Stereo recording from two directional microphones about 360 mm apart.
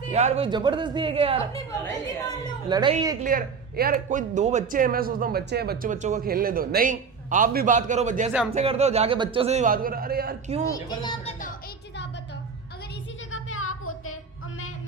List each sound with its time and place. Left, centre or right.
0.1 s a man's voice: centre
1.8 s a woman's voice: centre
2.6 s a man's voice: centre
3.2 s a man's voice: right
10.8 s a woman's voice: centre
13.3 s music: left